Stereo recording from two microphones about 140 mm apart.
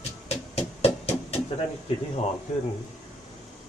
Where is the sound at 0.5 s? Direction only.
45° left (ahead or behind).